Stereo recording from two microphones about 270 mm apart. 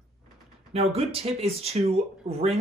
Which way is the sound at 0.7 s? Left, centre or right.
Right.